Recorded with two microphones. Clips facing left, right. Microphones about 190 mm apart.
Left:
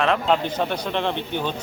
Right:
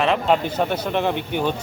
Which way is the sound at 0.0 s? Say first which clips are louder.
Right 1 dB; 5° right (ahead or behind).